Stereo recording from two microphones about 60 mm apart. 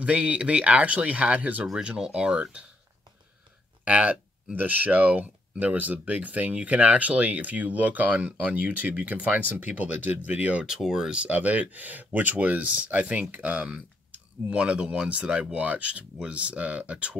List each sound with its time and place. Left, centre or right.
0.0 s speech: right
1.8 s speech: centre
3.8 s speech: right
10.6 s speech: centre
11.2 s speech: right